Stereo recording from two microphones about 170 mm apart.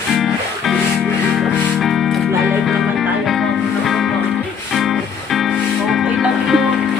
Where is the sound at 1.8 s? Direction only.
Centre (ahead or behind).